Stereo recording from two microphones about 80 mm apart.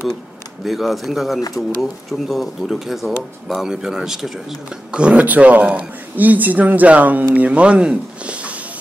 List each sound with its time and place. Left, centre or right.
0.7 s speech: centre